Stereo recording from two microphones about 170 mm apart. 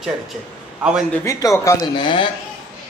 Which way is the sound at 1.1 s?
15° left (ahead or behind).